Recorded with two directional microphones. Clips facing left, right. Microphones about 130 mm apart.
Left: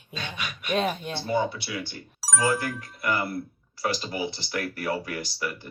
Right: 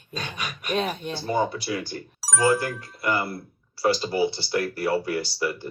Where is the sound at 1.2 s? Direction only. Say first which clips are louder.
Right 2 dB; 40° right (ahead or behind).